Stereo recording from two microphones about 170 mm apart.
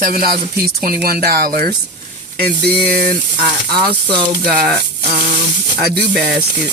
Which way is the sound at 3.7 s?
5° left (ahead or behind).